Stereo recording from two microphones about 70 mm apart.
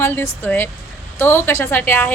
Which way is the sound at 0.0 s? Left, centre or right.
Left.